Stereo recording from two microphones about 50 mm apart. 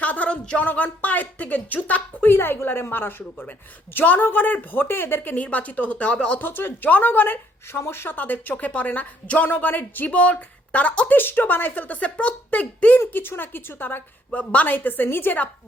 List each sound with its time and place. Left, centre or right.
0.0 s music: left
0.6 s a woman's voice: left
2.3 s a woman's voice: left
6.4 s speech: left
7.8 s speech: left
8.1 s a woman's voice: left
11.2 s a woman's voice: left
13.1 s speech: left
14.3 s a woman's voice: left